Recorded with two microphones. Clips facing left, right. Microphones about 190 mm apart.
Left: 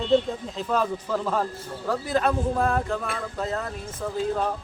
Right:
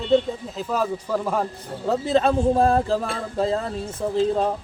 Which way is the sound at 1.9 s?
25° right (ahead or behind).